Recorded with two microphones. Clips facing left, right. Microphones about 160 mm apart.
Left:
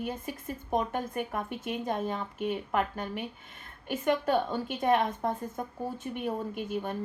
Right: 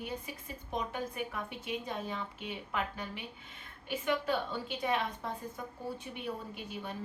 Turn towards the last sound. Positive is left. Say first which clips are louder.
# left 8 dB
turn(degrees=50)  # may be behind; listen again after turning